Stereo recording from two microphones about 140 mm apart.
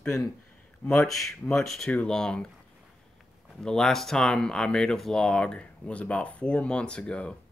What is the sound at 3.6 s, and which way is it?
Speech, 5° left (ahead or behind).